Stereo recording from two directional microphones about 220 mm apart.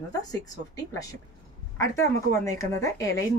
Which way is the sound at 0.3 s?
15° left (ahead or behind).